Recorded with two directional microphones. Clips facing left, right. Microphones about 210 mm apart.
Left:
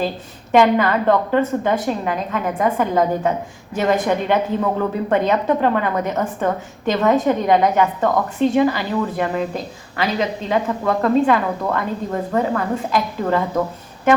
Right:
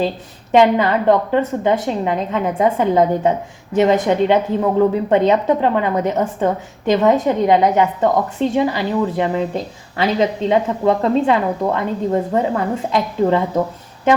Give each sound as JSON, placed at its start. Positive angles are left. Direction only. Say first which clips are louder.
{"t": 0.5, "sound": "a woman's voice", "louder": "right 2 dB", "side_deg": -20}